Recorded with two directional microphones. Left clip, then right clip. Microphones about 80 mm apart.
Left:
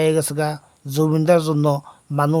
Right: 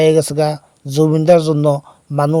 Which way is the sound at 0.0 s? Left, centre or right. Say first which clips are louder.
Right 7 dB; right.